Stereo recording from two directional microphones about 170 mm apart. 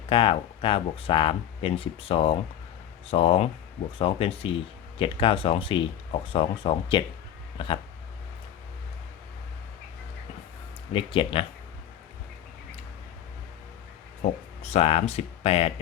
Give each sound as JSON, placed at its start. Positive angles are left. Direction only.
{"t": 0.1, "sound": "speech", "side_deg": 30}
{"t": 10.9, "sound": "speech", "side_deg": 30}
{"t": 14.6, "sound": "speech", "side_deg": 40}